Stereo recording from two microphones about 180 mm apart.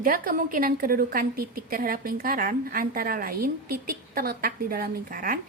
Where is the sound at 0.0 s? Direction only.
50° right (ahead or behind).